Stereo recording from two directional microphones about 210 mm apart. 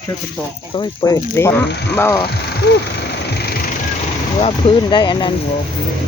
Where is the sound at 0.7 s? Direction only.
20° left (ahead or behind).